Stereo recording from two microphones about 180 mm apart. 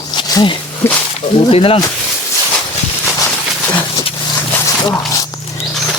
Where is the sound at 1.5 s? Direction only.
30° left (ahead or behind).